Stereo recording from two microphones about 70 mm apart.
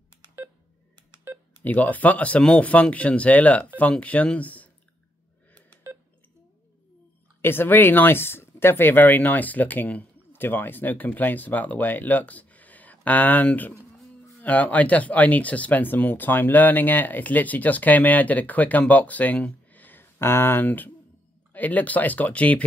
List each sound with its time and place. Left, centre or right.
1.6 s speech: left
7.4 s speech: left